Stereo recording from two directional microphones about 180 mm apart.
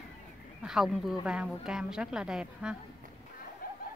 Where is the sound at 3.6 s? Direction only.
55° left (ahead or behind).